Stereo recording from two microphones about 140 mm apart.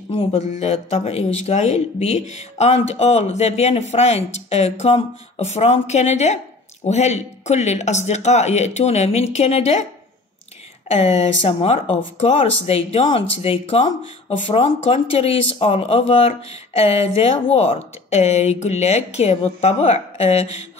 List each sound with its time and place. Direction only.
0.1 s speech: 45° left (ahead or behind)
10.9 s speech: 50° left (ahead or behind)